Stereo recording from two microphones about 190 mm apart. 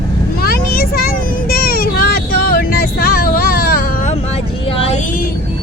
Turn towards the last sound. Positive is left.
turn(degrees=50)  # may be behind; listen again after turning